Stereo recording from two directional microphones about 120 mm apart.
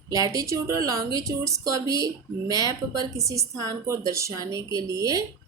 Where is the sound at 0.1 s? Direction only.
30° right (ahead or behind).